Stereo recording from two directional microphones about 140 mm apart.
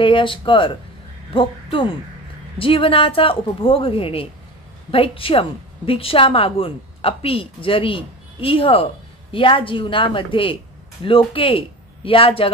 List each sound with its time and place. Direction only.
0.0 s a woman's voice: 35° left (ahead or behind)